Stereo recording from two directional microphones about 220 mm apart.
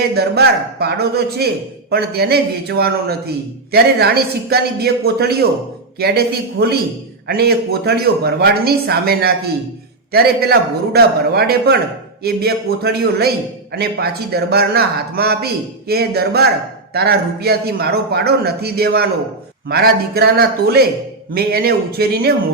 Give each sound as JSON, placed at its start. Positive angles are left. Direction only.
{"t": 0.1, "sound": "a man's voice", "side_deg": -45}